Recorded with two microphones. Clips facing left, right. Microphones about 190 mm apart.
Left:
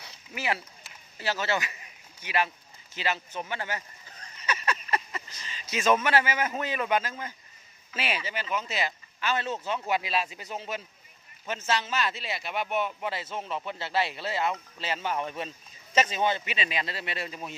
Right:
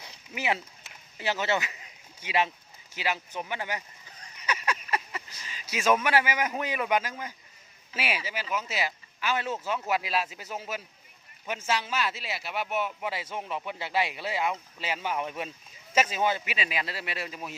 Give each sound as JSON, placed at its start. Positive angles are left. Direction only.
{"t": 0.0, "sound": "a sound", "side_deg": -15}
{"t": 2.2, "sound": "speech", "side_deg": -25}
{"t": 2.9, "sound": "speech", "side_deg": -10}